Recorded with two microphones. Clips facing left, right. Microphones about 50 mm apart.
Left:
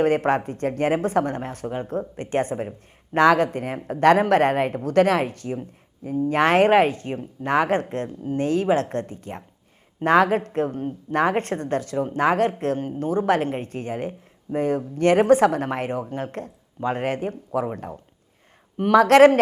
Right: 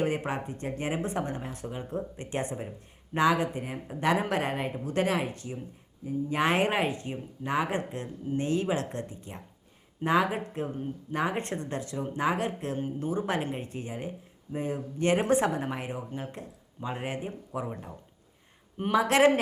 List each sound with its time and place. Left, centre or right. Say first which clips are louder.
0.0 s speech: left 10 dB; left
3.2 s speech: left 8 dB; left
10.0 s speech: left 8 dB; left
18.8 s speech: left 10 dB; left